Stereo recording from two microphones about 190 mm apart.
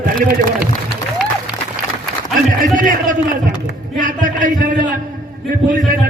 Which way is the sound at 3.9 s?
45° right (ahead or behind).